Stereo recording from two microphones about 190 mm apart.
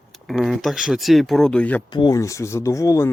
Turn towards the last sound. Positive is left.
turn(degrees=15)  # may be behind; listen again after turning